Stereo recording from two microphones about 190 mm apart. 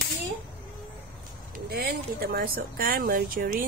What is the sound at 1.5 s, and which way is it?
Speech, 55° right (ahead or behind).